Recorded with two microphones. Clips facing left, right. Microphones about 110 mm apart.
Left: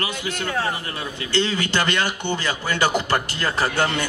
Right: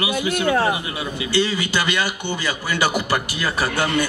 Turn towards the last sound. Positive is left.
turn(degrees=-10)  # may be behind; listen again after turning